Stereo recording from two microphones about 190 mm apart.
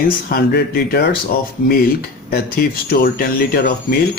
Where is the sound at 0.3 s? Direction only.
50° left (ahead or behind).